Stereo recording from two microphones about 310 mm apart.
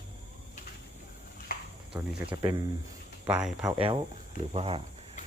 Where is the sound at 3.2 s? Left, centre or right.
Centre.